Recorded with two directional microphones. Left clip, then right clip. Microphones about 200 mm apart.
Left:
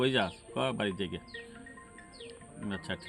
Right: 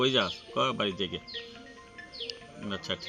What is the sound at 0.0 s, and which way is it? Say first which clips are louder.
A man's voice: right 3 dB; 25° left (ahead or behind).